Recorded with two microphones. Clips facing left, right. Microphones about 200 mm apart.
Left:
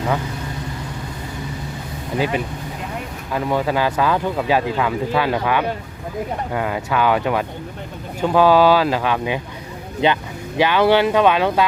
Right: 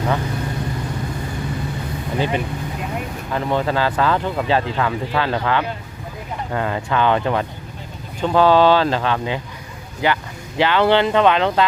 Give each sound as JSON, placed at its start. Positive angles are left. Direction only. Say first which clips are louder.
{"t": 2.1, "sound": "speech", "louder": "left 1 dB", "side_deg": 10}
{"t": 10.0, "sound": "speech", "louder": "left 2 dB", "side_deg": 25}
{"t": 10.6, "sound": "speech", "louder": "left 1 dB", "side_deg": 15}